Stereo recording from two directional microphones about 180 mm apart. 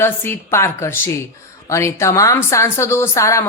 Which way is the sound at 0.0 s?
10° left (ahead or behind).